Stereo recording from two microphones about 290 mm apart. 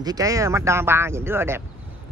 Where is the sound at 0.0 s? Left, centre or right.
Centre.